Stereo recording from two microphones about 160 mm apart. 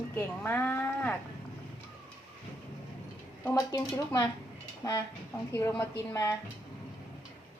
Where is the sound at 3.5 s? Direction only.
20° left (ahead or behind).